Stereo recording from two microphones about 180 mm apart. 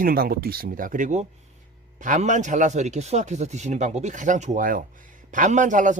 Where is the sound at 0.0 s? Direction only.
55° right (ahead or behind).